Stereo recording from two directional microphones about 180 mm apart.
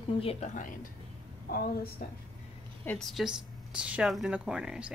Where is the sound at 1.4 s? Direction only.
55° left (ahead or behind).